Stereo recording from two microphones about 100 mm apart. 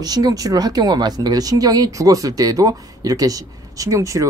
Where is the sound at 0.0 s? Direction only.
40° right (ahead or behind).